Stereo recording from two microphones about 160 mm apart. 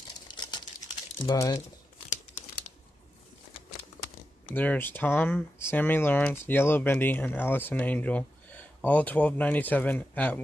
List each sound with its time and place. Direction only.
0.4 s a sound: 25° left (ahead or behind)
1.2 s speech: 25° left (ahead or behind)
4.6 s speech: 10° left (ahead or behind)